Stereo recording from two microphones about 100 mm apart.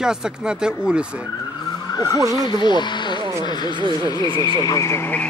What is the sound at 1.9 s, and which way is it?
Vehicle, 40° left (ahead or behind).